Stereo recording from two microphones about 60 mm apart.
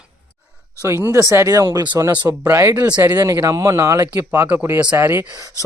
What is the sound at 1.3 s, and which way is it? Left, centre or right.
Speech, right.